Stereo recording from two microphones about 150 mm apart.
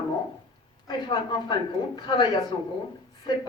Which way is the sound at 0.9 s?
30° left (ahead or behind).